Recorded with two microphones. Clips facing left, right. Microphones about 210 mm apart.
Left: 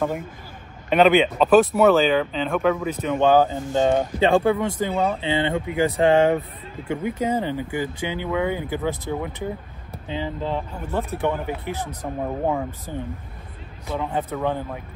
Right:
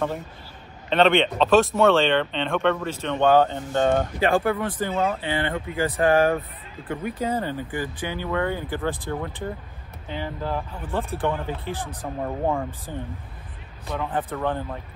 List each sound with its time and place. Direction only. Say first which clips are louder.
0.8 s speech: left 3 dB; 10° left (ahead or behind)
13.9 s speech: left 2 dB; 15° left (ahead or behind)